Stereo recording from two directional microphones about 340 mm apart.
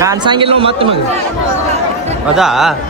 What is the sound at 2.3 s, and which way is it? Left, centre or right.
Speech, centre.